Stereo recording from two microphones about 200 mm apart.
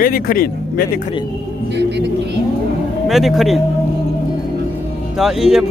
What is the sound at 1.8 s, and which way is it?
Speech, 55° right (ahead or behind).